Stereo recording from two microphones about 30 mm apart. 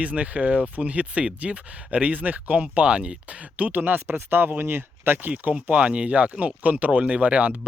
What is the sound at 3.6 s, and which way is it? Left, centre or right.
Speech, right.